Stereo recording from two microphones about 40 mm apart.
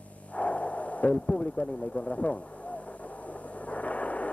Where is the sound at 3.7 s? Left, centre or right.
Left.